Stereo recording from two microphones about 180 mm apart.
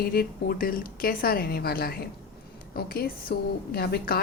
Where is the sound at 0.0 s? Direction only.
55° left (ahead or behind).